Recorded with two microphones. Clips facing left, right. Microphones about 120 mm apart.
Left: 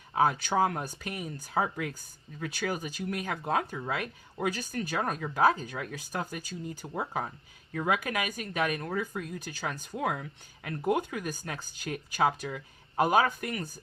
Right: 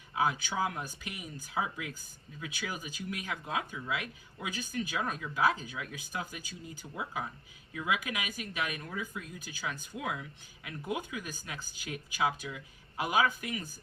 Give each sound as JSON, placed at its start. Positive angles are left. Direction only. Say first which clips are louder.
{"t": 0.1, "sound": "speech", "louder": "left 5 dB", "side_deg": 45}